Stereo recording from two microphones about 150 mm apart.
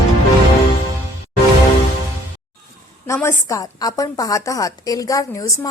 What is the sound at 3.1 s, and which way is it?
A woman's voice, 15° left (ahead or behind).